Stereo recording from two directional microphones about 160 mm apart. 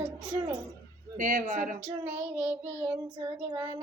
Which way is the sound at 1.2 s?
55° right (ahead or behind).